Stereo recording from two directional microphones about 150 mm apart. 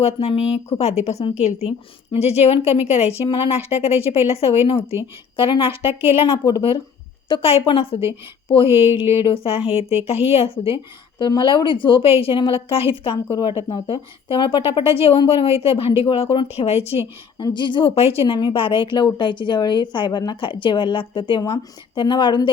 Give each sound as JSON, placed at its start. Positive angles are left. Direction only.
{"t": 0.0, "sound": "a woman's voice", "side_deg": 40}
{"t": 17.3, "sound": "a woman's voice", "side_deg": 30}